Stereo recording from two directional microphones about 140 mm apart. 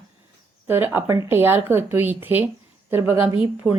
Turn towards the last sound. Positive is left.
turn(degrees=-15)  # may be behind; listen again after turning